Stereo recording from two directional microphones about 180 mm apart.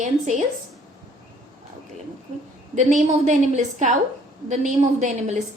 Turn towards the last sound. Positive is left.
turn(degrees=-40)  # may be behind; listen again after turning